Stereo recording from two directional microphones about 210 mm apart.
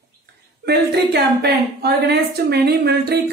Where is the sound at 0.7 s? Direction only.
50° right (ahead or behind).